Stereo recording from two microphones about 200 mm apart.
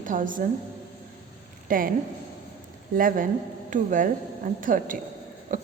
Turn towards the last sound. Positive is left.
turn(degrees=-40)  # may be behind; listen again after turning